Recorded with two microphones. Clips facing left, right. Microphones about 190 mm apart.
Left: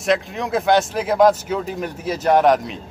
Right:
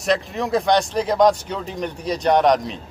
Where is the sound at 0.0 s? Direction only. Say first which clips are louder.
Left 1 dB; centre (ahead or behind).